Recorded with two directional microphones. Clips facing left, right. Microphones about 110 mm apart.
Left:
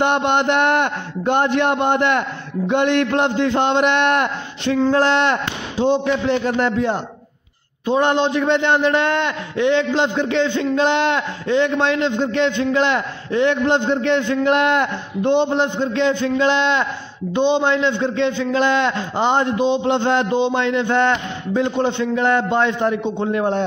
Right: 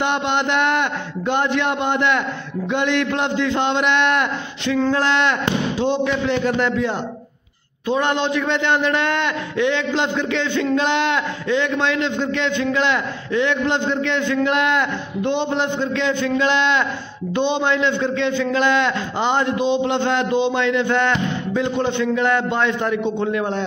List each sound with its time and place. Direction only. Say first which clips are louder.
0.0 s a man's voice: left 3 dB; 50° left (ahead or behind)